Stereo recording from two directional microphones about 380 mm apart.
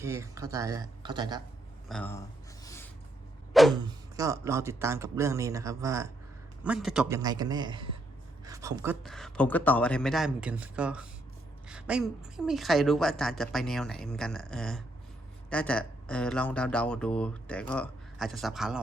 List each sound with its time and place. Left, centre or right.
0.0 s speech: centre
1.9 s speech: centre
2.6 s a sound: centre
3.8 s speech: centre